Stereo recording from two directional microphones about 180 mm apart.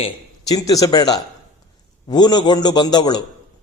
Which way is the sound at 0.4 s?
20° left (ahead or behind).